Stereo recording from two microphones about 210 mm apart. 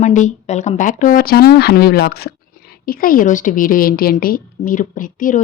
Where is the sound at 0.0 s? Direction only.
35° left (ahead or behind).